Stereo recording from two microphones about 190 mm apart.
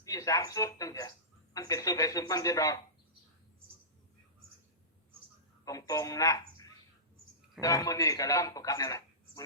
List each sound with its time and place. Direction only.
0.0 s a man's voice: 15° left (ahead or behind)
5.6 s a man's voice: 20° left (ahead or behind)